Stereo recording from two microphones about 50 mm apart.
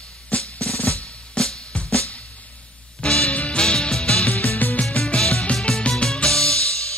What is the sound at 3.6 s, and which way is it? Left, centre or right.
Music, centre.